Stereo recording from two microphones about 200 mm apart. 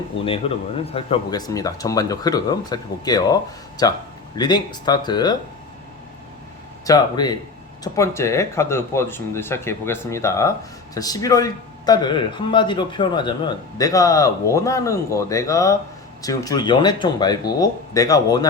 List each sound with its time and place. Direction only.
0.3 s speech: 30° left (ahead or behind)
6.8 s speech: 20° left (ahead or behind)